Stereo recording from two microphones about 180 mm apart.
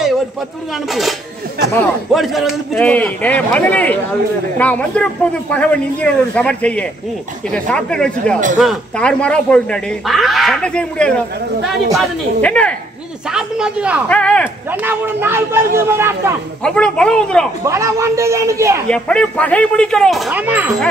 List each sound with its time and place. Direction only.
0.8 s speech: centre (ahead or behind)
2.1 s speech: centre (ahead or behind)
13.3 s speech: 5° right (ahead or behind)
14.0 s speech: 5° left (ahead or behind)
14.7 s speech: 10° right (ahead or behind)
16.6 s speech: 5° left (ahead or behind)
17.6 s speech: 15° right (ahead or behind)
18.9 s speech: 5° left (ahead or behind)